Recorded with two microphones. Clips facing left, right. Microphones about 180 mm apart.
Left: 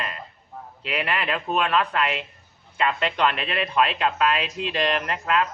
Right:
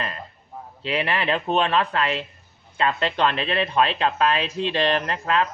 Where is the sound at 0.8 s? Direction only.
30° right (ahead or behind).